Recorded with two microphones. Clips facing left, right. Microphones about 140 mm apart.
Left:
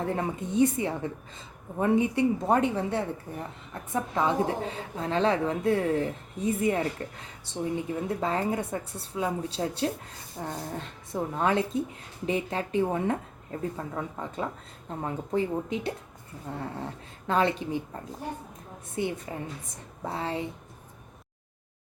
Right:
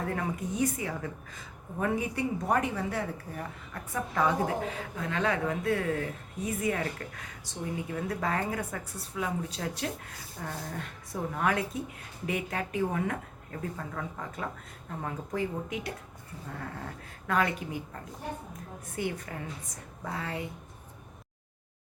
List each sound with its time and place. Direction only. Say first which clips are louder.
0.0 s a woman's voice: left 3 dB; 25° left (ahead or behind)
18.9 s a woman's voice: left 3 dB; 25° left (ahead or behind)